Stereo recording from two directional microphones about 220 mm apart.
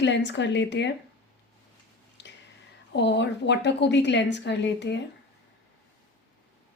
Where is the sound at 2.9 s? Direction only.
55° left (ahead or behind).